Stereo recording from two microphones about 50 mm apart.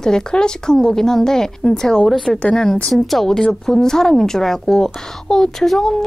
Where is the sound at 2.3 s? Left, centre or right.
Left.